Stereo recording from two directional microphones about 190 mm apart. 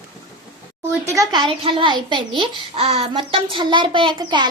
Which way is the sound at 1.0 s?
15° right (ahead or behind).